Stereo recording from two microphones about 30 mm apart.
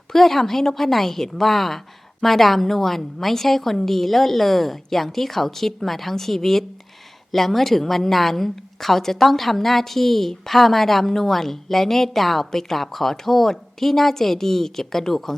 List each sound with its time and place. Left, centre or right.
0.1 s a woman's voice: centre